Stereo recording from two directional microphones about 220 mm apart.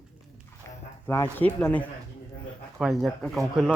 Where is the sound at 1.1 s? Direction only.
10° left (ahead or behind).